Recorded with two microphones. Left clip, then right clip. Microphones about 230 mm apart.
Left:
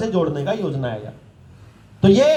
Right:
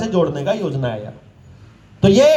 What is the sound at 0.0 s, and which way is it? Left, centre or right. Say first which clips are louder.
Speech: right 3 dB; right.